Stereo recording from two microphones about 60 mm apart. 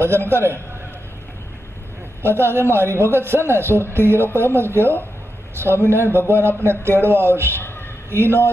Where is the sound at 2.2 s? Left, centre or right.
Right.